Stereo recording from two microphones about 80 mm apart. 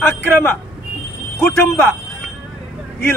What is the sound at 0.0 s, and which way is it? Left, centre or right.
Speech, centre.